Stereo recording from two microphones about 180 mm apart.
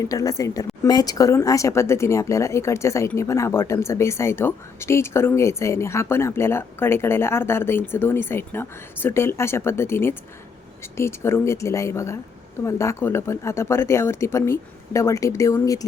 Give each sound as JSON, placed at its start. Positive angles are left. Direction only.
{"t": 0.0, "sound": "speech", "side_deg": 20}